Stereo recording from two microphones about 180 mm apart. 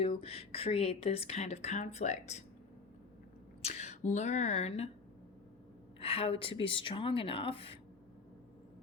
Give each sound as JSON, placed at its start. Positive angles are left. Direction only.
{"t": 0.0, "sound": "speech", "side_deg": 30}
{"t": 3.6, "sound": "speech", "side_deg": 40}
{"t": 6.0, "sound": "a woman's voice", "side_deg": 30}